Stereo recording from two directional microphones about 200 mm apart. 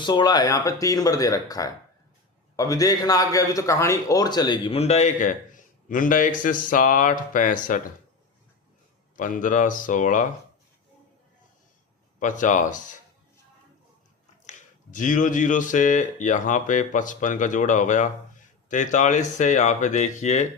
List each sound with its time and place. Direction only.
0.0 s a man's voice: 20° left (ahead or behind); by 7.8 s 40° left (ahead or behind)
9.1 s a man's voice: 40° left (ahead or behind)
12.2 s a man's voice: 40° left (ahead or behind)
14.4 s a man's voice: 40° left (ahead or behind)